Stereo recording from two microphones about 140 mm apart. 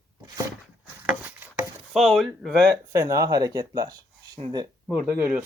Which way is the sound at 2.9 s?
20° right (ahead or behind).